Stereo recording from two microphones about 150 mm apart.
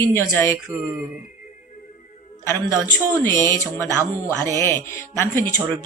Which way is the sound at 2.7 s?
15° left (ahead or behind).